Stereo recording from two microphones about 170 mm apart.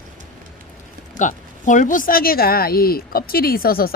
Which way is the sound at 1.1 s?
45° left (ahead or behind).